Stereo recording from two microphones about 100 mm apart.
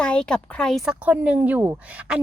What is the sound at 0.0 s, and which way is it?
Speech, 10° left (ahead or behind).